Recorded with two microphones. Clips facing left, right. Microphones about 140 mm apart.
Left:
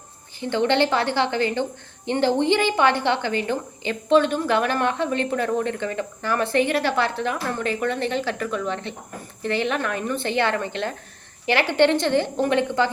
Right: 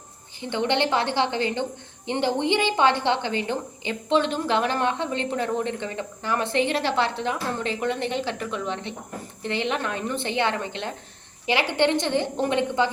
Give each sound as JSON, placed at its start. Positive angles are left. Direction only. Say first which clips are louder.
{"t": 0.3, "sound": "a woman's voice", "louder": "left 4 dB", "side_deg": -20}